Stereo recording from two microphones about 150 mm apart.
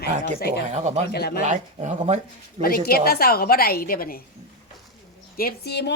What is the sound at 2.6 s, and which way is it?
A woman's voice, 85° left.